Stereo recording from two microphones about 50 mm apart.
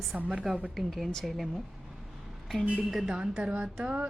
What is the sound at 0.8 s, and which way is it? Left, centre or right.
Speech, centre.